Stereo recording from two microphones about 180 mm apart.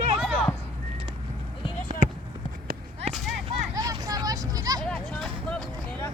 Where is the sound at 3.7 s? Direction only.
20° right (ahead or behind).